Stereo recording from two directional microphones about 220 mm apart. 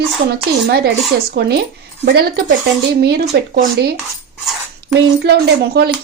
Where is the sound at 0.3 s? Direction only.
45° right (ahead or behind).